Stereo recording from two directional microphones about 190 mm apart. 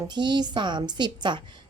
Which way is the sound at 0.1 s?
25° right (ahead or behind).